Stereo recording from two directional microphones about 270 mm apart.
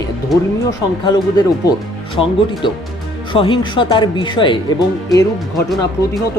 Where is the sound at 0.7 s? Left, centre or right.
Centre.